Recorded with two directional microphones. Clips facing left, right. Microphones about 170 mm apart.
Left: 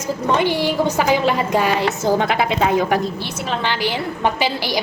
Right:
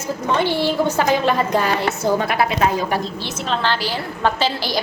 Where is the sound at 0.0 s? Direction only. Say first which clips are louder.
Left 2 dB; 15° left (ahead or behind).